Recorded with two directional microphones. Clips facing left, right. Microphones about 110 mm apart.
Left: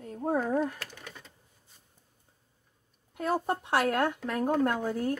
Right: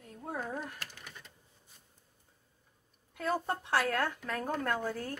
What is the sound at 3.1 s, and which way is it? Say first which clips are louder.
A woman's voice: left 4 dB; 25° left (ahead or behind).